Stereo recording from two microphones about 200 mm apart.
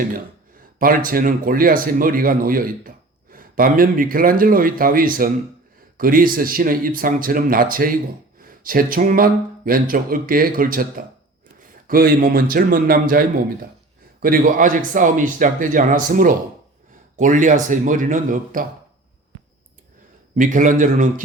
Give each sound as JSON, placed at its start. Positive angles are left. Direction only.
{"t": 0.8, "sound": "a man's voice", "side_deg": -45}
{"t": 20.3, "sound": "speech", "side_deg": -40}